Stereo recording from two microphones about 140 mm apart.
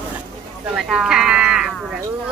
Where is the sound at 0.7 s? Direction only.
5° right (ahead or behind).